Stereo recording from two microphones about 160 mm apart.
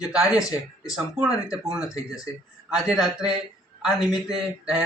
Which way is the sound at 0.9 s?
5° right (ahead or behind).